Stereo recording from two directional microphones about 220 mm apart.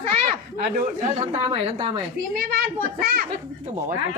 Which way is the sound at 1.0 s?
30° right (ahead or behind).